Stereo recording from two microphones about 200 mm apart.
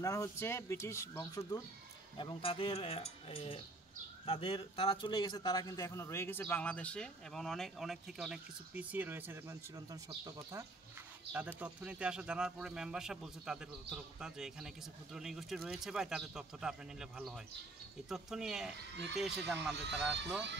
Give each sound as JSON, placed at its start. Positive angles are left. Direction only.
{"t": 0.0, "sound": "a man's voice", "side_deg": 15}
{"t": 2.1, "sound": "a man's voice", "side_deg": 25}